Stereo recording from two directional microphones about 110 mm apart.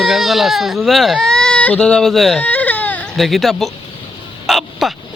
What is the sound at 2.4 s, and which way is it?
Baby cry, 15° left (ahead or behind).